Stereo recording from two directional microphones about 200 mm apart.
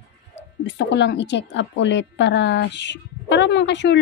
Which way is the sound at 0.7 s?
60° left (ahead or behind).